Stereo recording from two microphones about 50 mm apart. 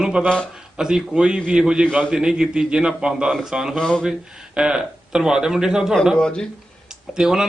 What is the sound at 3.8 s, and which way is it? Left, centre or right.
Speech, centre.